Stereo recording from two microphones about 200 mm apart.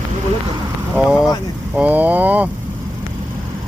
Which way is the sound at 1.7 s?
10° right (ahead or behind).